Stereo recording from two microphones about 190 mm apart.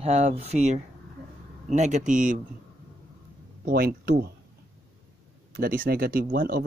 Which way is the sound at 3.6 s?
55° right (ahead or behind).